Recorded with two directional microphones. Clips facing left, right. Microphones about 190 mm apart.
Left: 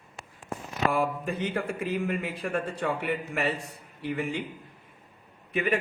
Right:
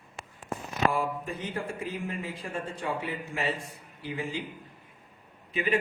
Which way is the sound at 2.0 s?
65° left (ahead or behind).